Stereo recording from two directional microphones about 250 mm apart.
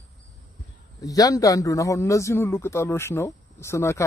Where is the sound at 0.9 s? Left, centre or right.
Centre.